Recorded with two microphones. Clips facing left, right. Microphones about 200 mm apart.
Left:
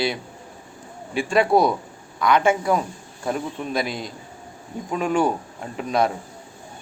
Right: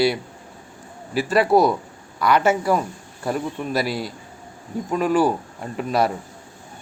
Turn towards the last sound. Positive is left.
turn(degrees=-5)  # may be behind; listen again after turning